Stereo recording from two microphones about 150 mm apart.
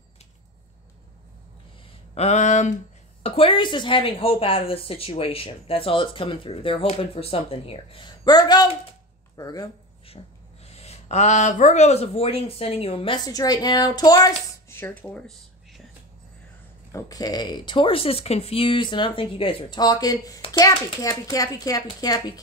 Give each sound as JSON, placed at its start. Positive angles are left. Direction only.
{"t": 2.1, "sound": "speech", "side_deg": 50}
{"t": 3.2, "sound": "a woman's voice", "side_deg": 40}
{"t": 10.0, "sound": "speech", "side_deg": 40}
{"t": 16.9, "sound": "a woman's voice", "side_deg": 25}